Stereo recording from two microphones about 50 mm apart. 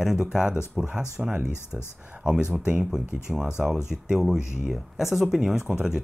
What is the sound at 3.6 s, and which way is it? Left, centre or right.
Speech, right.